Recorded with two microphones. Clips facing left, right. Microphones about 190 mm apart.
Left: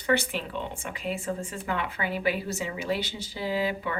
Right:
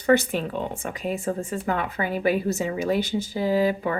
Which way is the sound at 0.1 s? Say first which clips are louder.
Right 6 dB; 45° right (ahead or behind).